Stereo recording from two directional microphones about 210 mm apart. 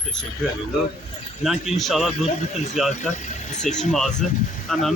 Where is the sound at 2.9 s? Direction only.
35° left (ahead or behind).